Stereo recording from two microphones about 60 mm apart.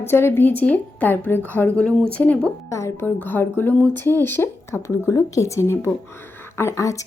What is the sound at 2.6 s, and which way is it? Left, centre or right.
Speech, left.